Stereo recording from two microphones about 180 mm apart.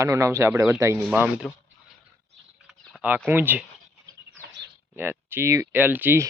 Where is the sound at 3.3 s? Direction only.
10° right (ahead or behind).